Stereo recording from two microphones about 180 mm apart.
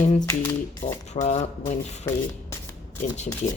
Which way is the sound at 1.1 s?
40° left (ahead or behind).